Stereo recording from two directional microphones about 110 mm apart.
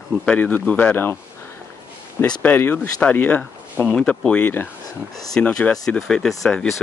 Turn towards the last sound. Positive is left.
turn(degrees=5)  # may be behind; listen again after turning